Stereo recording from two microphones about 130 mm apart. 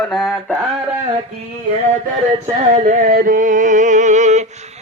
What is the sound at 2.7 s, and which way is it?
Music, 90° right.